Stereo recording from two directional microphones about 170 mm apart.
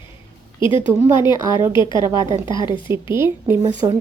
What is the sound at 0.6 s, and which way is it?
Speech, 30° left (ahead or behind).